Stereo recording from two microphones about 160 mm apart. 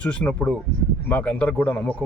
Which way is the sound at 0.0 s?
5° left (ahead or behind).